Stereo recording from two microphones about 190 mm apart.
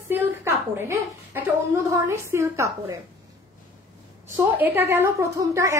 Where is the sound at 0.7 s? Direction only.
10° right (ahead or behind).